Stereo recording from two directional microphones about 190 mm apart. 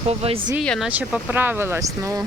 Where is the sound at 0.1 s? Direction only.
30° right (ahead or behind).